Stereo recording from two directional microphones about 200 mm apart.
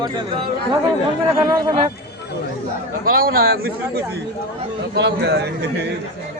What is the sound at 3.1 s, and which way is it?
Speech, 45° right (ahead or behind).